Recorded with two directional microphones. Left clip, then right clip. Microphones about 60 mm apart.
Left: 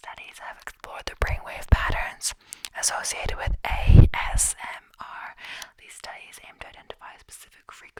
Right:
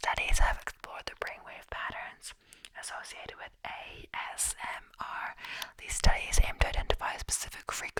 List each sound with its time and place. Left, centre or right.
0.0 s whispering: right
0.8 s whispering: left
1.2 s whispering: left
4.6 s whispering: centre
5.9 s whispering: right